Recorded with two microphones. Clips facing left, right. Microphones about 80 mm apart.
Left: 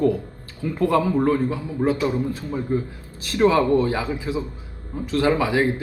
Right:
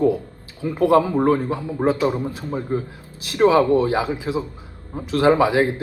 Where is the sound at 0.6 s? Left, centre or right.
Centre.